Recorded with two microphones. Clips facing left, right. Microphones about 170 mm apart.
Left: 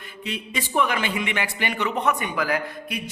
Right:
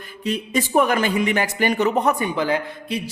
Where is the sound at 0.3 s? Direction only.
45° right (ahead or behind).